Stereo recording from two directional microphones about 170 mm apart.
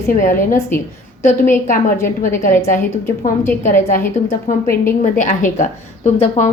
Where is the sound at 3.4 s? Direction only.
15° left (ahead or behind).